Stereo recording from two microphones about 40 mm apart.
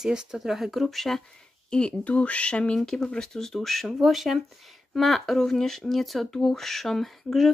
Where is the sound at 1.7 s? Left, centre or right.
Left.